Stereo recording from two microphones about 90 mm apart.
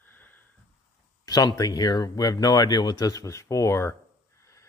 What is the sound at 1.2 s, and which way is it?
Speech, 45° left (ahead or behind).